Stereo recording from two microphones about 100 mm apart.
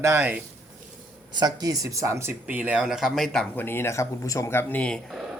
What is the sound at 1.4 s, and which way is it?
Speech, 40° right (ahead or behind).